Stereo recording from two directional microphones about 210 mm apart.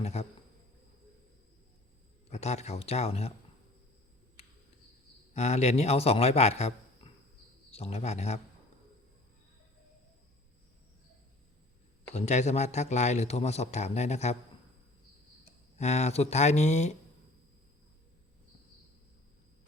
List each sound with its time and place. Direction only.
0.0 s speech: 30° left (ahead or behind)
2.3 s speech: 30° left (ahead or behind)
5.3 s a man's voice: 30° left (ahead or behind)
12.1 s speech: 30° left (ahead or behind)
15.8 s speech: 30° left (ahead or behind)